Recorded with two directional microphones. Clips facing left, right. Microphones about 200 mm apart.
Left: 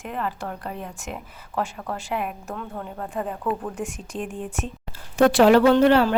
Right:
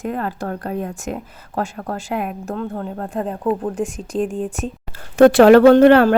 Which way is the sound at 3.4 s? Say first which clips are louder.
Right 10 dB; 25° right (ahead or behind).